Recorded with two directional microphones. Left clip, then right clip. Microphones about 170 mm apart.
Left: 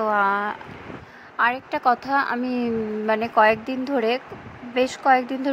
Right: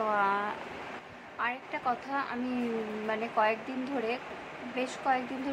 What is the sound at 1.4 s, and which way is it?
A woman's voice, 45° left (ahead or behind).